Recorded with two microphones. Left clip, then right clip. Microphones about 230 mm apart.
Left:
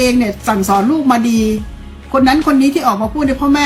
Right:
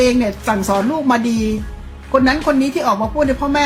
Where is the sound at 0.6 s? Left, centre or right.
Centre.